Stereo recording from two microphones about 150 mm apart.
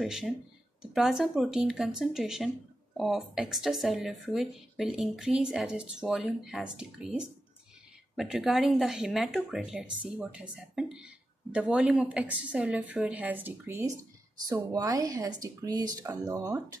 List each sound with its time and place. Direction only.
0.0 s a woman's voice: centre (ahead or behind); by 16.7 s 20° right (ahead or behind)